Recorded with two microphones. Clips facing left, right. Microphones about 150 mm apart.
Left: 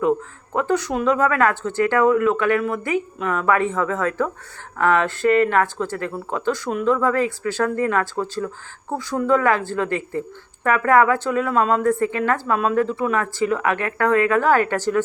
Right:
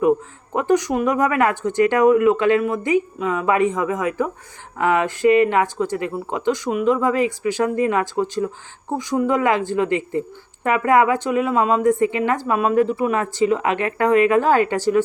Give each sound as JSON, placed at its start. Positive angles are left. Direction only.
{"t": 0.5, "sound": "a woman's voice", "side_deg": -15}